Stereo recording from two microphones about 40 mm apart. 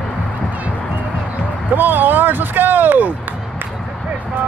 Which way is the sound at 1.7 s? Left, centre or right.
Right.